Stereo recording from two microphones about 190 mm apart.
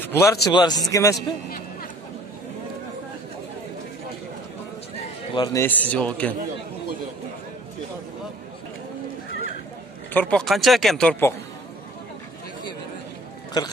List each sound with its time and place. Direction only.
0.0 s speech: 15° left (ahead or behind)
1.1 s a man's voice: 50° left (ahead or behind)
4.9 s speech: 25° left (ahead or behind); by 6.3 s 5° left (ahead or behind)
10.1 s speech: 5° left (ahead or behind)
13.5 s speech: 20° left (ahead or behind)